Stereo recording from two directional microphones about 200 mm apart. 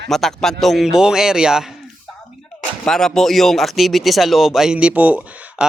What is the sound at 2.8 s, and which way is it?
Speech, 5° left (ahead or behind).